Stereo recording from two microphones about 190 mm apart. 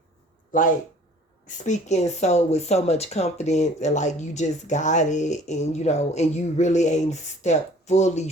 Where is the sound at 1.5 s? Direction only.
40° left (ahead or behind).